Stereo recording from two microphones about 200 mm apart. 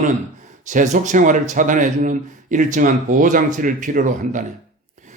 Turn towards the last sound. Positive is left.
turn(degrees=-40)  # may be behind; listen again after turning